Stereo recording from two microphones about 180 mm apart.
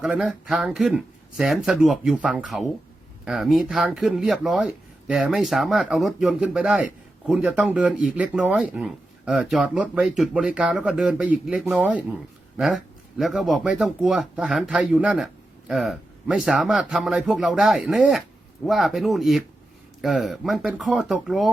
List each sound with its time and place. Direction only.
0.0 s speech: 5° right (ahead or behind)